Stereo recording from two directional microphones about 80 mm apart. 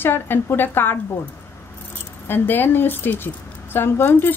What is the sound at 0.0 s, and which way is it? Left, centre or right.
Speech, left.